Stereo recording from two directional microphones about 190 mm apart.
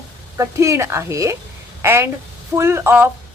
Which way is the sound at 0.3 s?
15° right (ahead or behind).